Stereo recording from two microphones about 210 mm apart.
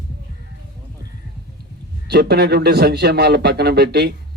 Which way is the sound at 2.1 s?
50° right (ahead or behind).